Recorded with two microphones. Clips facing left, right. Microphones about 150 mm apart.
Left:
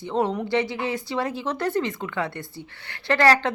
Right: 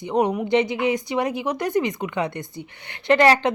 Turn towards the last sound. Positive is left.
turn(degrees=-20)  # may be behind; listen again after turning